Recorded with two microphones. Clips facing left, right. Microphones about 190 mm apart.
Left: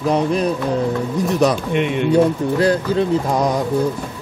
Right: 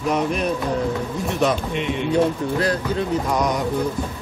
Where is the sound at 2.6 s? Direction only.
30° left (ahead or behind).